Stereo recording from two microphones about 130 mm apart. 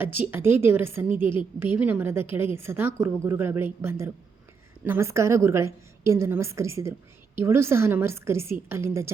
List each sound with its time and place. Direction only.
0.0 s a woman's voice: 15° right (ahead or behind)